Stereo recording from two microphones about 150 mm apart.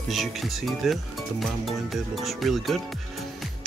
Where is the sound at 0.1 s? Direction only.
Centre (ahead or behind).